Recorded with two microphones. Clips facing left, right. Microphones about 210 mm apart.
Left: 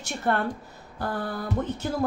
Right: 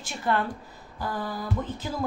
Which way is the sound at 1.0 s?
60° left (ahead or behind).